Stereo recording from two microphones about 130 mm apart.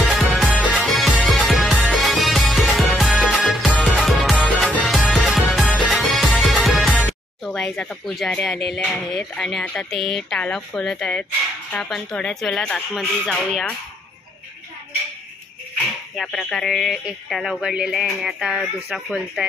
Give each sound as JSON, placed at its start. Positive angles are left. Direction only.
{"t": 0.0, "sound": "music", "side_deg": 0}
{"t": 8.8, "sound": "speech", "side_deg": 5}
{"t": 16.2, "sound": "speech", "side_deg": 5}